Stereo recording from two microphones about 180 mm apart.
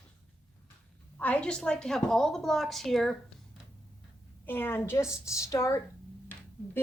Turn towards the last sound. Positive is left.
turn(degrees=15)  # may be behind; listen again after turning